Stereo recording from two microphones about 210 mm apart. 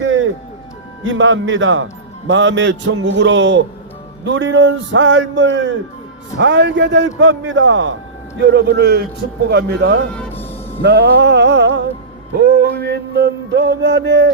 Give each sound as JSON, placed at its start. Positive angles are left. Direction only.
{"t": 0.0, "sound": "music", "side_deg": -65}
{"t": 1.0, "sound": "a man's voice", "side_deg": -65}
{"t": 8.4, "sound": "music", "side_deg": -55}
{"t": 12.5, "sound": "a man's voice", "side_deg": -50}